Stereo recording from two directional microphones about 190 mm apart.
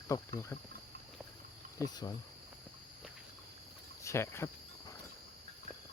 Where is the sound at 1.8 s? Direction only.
15° left (ahead or behind).